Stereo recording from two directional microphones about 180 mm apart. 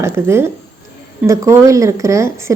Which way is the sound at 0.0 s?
15° right (ahead or behind).